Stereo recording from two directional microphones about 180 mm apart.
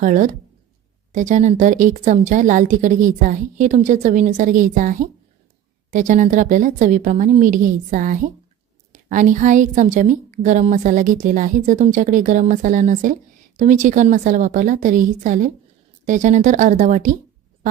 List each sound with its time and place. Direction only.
0.0 s a woman's voice: 45° right (ahead or behind)